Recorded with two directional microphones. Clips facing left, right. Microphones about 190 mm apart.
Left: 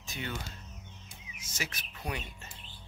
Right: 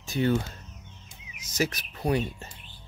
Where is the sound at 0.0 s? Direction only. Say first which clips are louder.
Right 15 dB; 35° right (ahead or behind).